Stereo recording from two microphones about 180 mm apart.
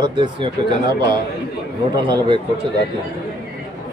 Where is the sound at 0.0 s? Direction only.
25° right (ahead or behind).